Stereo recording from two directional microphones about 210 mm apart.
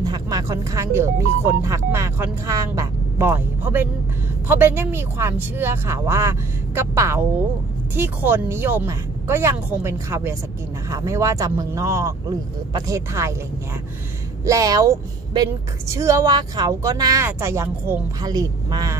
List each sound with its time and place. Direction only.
0.0 s speech: 20° right (ahead or behind)
14.4 s speech: 15° right (ahead or behind)